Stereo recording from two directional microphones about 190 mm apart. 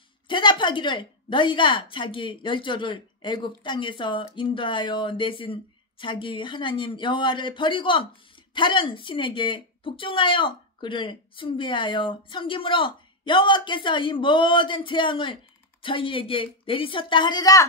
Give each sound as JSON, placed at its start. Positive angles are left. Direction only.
{"t": 0.3, "sound": "a woman's voice", "side_deg": 25}